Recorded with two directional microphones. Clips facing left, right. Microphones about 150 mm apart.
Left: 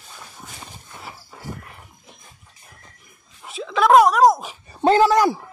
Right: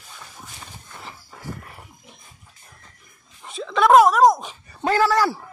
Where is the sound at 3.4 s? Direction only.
Centre (ahead or behind).